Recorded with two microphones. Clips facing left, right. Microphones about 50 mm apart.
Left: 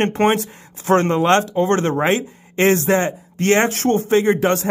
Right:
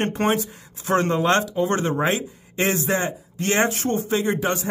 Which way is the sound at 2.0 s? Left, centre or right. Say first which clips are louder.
Left 4 dB; left.